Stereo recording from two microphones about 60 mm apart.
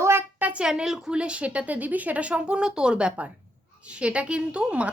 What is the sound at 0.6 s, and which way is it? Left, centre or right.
A woman's voice, centre.